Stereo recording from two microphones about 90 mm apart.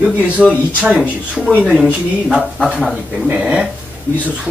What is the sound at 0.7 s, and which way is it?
Speech, 15° right (ahead or behind).